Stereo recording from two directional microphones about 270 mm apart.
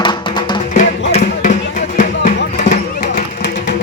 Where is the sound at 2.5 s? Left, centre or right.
Left.